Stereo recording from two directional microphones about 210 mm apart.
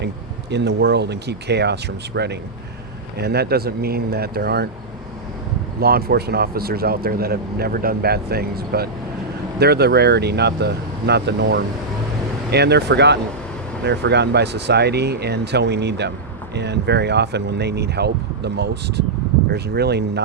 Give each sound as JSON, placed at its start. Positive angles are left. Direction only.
{"t": 0.5, "sound": "speech", "side_deg": -55}
{"t": 5.8, "sound": "speech", "side_deg": -45}